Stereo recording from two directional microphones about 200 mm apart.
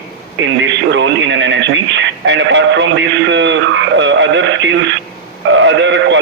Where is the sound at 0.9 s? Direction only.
65° right (ahead or behind).